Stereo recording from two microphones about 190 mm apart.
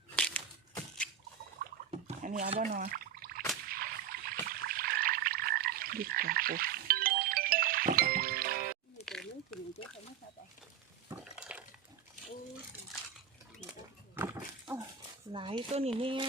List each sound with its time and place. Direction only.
0.2 s crushing: 5° left (ahead or behind)
1.9 s a sound: 40° right (ahead or behind)
3.7 s boat: 50° right (ahead or behind)
4.4 s frog: 50° right (ahead or behind)
9.0 s a sound: centre (ahead or behind)
11.1 s water: 5° right (ahead or behind)
14.2 s dog: 10° right (ahead or behind)
15.3 s speech: 25° right (ahead or behind)